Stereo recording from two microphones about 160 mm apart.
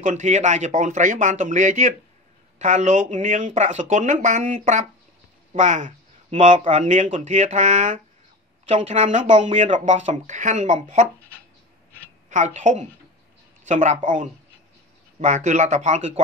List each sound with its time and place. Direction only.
0.0 s speech: 50° right (ahead or behind)
12.3 s speech: 50° right (ahead or behind)